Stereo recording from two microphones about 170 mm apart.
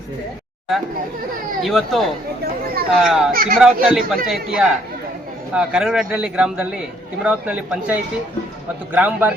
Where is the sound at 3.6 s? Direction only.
Centre (ahead or behind).